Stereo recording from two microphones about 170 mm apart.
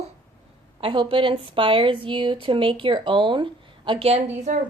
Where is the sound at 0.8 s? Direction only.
30° right (ahead or behind).